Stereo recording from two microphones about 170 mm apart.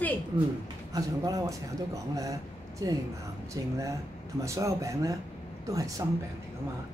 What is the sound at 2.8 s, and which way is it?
Speech, 20° right (ahead or behind).